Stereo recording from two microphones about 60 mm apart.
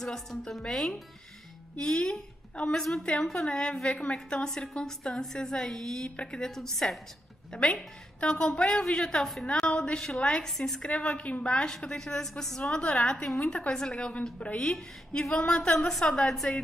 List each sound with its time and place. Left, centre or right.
0.0 s a woman's voice: centre
2.8 s a woman's voice: centre
3.3 s a woman's voice: centre
7.5 s a woman's voice: centre
10.9 s a woman's voice: left